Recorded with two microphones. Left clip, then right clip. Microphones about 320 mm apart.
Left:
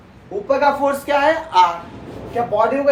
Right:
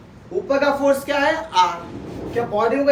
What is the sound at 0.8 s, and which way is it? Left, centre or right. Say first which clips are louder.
A woman's voice: left 2 dB; centre.